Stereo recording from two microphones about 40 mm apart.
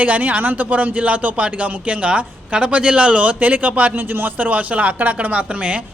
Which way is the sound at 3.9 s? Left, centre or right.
Right.